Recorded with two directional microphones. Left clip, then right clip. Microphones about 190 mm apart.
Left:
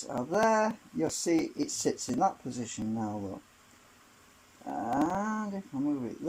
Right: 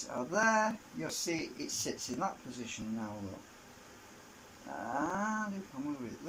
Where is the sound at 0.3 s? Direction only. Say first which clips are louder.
Left 3 dB; 35° left (ahead or behind).